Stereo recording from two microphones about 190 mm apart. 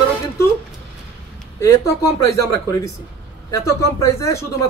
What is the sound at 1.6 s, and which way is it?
Speech, 15° left (ahead or behind).